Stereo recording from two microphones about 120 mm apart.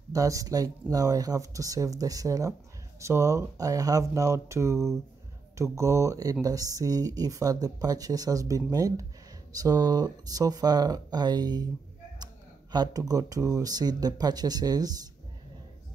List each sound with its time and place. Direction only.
0.1 s speech: 30° right (ahead or behind)
12.7 s speech: 35° right (ahead or behind)